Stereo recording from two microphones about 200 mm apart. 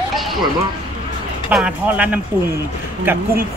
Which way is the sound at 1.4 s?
5° right (ahead or behind).